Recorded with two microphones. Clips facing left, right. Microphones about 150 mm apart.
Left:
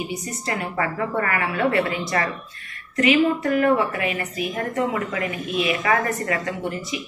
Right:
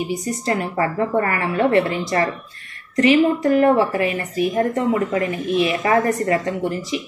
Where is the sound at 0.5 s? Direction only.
30° right (ahead or behind).